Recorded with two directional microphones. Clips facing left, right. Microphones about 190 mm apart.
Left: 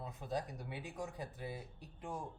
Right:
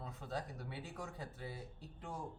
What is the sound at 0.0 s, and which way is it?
A man's voice, 15° left (ahead or behind).